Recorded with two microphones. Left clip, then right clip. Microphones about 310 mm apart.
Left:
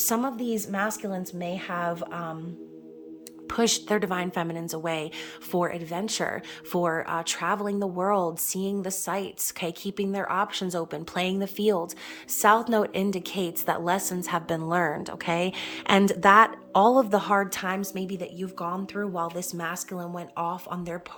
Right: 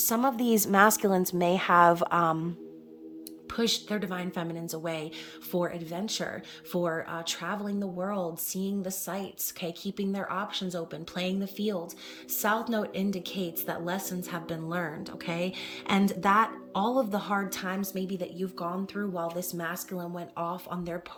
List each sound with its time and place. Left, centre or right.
0.0 s a woman's voice: centre
3.5 s a woman's voice: centre